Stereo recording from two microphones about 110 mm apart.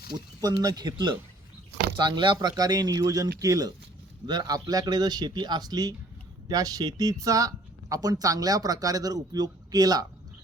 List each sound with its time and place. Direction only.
0.4 s speech: 35° right (ahead or behind)